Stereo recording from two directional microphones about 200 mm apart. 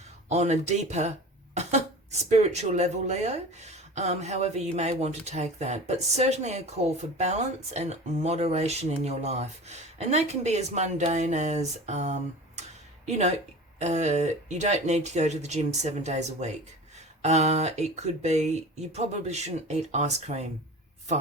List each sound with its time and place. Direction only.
0.3 s speech: 35° right (ahead or behind)